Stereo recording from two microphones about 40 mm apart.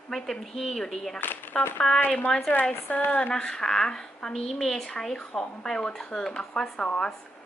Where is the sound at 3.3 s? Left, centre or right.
Centre.